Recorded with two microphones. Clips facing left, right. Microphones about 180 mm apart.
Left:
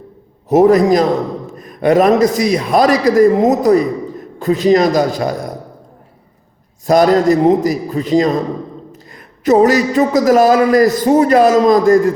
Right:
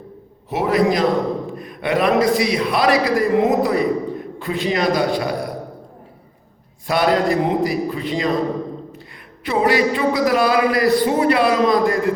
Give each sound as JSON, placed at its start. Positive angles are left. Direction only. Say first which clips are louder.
{"t": 0.4, "sound": "a man's voice", "louder": "left 8 dB", "side_deg": 45}
{"t": 6.8, "sound": "a man's voice", "louder": "left 7 dB", "side_deg": 40}
{"t": 9.4, "sound": "a man's voice", "louder": "left 7 dB", "side_deg": 45}